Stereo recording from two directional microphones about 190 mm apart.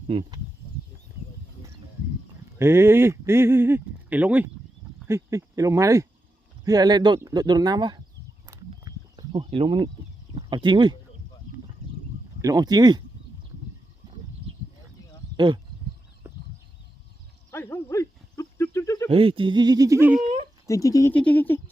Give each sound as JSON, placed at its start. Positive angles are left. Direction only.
{"t": 0.1, "sound": "speech", "side_deg": -25}
{"t": 2.6, "sound": "speech", "side_deg": -10}
{"t": 8.4, "sound": "a sound", "side_deg": -20}
{"t": 10.3, "sound": "speech", "side_deg": -25}
{"t": 12.4, "sound": "speech", "side_deg": -20}
{"t": 15.4, "sound": "speech", "side_deg": -25}
{"t": 17.5, "sound": "a sound", "side_deg": 10}
{"t": 19.0, "sound": "speech", "side_deg": -30}
{"t": 20.7, "sound": "speech", "side_deg": 15}